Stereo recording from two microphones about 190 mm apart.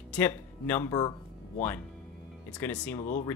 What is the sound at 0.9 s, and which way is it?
Speech, 25° left (ahead or behind).